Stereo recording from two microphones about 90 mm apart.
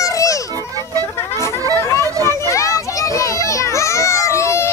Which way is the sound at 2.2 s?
35° left (ahead or behind).